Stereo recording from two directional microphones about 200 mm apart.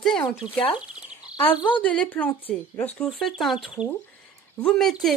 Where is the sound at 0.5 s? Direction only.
25° left (ahead or behind).